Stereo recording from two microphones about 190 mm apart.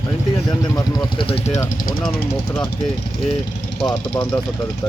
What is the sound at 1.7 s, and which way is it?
Speech, 45° left (ahead or behind).